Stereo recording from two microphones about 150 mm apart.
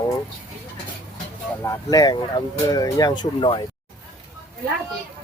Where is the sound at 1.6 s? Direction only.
20° left (ahead or behind).